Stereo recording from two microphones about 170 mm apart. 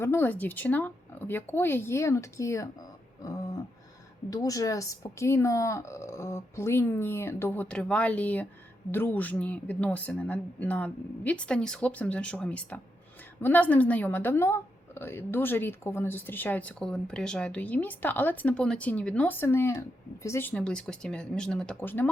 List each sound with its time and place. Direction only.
0.0 s a woman's voice: 15° left (ahead or behind)
3.2 s a sound: 20° left (ahead or behind)
4.3 s a woman's voice: 20° left (ahead or behind)